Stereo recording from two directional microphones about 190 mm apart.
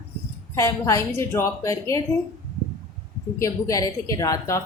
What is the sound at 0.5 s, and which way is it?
A woman's voice, 15° left (ahead or behind).